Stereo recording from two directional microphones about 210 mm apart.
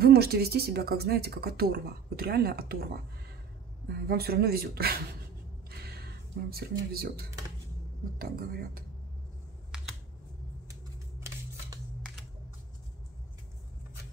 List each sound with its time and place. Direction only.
0.0 s speech: 50° right (ahead or behind)
5.7 s a sound: 50° right (ahead or behind)
6.5 s speech: 45° right (ahead or behind)
10.7 s scissors: 15° right (ahead or behind)